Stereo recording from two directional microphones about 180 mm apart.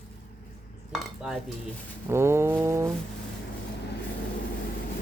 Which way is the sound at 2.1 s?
15° right (ahead or behind).